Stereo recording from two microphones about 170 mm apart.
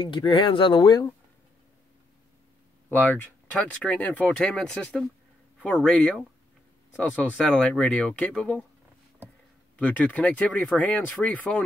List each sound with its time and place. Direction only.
0.0 s speech: 25° left (ahead or behind)
2.9 s speech: 10° left (ahead or behind)
9.8 s speech: 10° left (ahead or behind)